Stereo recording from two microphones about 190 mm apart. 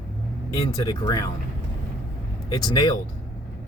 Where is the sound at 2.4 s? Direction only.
20° left (ahead or behind).